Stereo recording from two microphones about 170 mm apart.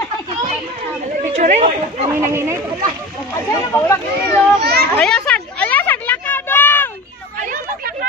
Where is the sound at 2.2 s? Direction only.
15° right (ahead or behind).